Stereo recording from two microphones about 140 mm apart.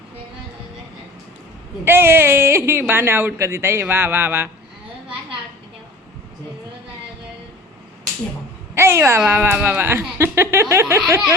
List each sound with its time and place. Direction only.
1.8 s speech: 15° right (ahead or behind)
8.7 s speech: 20° right (ahead or behind)